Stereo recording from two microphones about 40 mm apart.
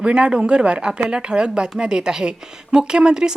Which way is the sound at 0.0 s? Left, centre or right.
Right.